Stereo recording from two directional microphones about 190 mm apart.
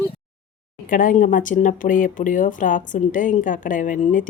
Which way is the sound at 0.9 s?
45° left (ahead or behind).